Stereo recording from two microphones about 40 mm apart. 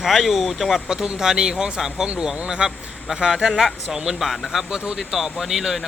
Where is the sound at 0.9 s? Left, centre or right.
Centre.